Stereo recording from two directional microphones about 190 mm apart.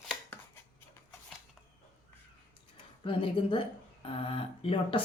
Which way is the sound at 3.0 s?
25° left (ahead or behind).